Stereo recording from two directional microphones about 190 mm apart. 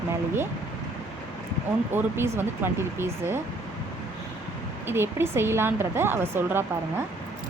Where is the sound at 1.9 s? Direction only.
10° right (ahead or behind).